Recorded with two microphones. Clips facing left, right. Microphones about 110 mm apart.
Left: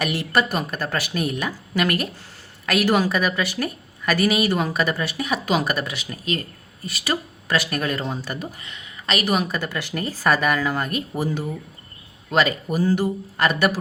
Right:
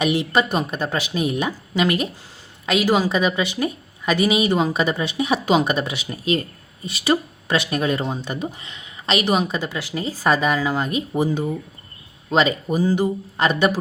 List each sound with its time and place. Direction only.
0.5 s a woman's voice: 25° right (ahead or behind)